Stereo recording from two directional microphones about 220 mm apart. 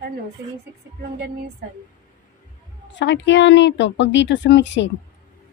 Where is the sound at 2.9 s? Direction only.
55° left (ahead or behind).